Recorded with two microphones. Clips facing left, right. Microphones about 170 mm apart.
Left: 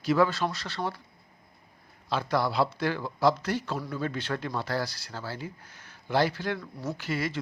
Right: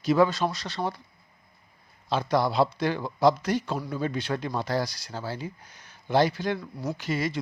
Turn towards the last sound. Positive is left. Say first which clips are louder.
# right 2 dB
turn(degrees=-20)  # may be behind; listen again after turning